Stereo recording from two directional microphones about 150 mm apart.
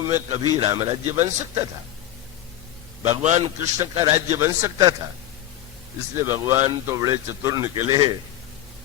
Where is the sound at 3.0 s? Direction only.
50° right (ahead or behind).